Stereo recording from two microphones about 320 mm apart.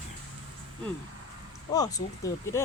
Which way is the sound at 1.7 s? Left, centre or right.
Centre.